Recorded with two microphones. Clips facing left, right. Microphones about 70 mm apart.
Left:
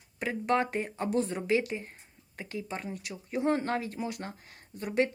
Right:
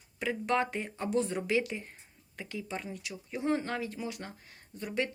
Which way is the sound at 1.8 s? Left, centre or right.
Left.